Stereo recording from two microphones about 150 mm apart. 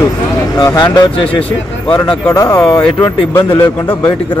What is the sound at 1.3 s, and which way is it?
Speech, 10° left (ahead or behind).